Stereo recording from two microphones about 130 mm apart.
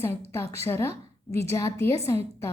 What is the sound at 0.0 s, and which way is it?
A woman's voice, 20° left (ahead or behind).